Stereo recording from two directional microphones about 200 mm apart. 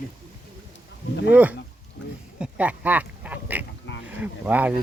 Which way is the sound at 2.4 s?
5° right (ahead or behind).